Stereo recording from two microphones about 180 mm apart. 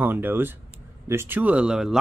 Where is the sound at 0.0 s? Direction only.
10° right (ahead or behind).